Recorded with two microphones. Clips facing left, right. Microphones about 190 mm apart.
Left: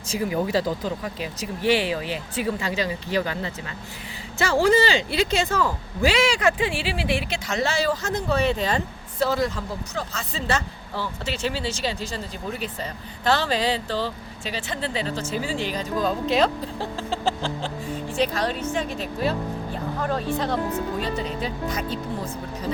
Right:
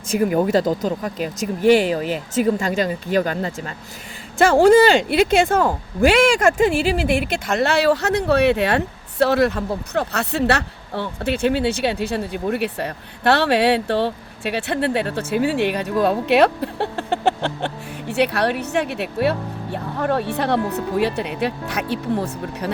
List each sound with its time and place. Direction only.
0.1 s speech: 55° right (ahead or behind)